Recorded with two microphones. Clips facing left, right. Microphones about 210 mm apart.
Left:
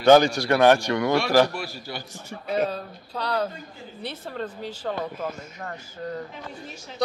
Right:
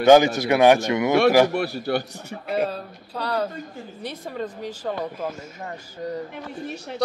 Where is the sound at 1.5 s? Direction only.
60° right (ahead or behind).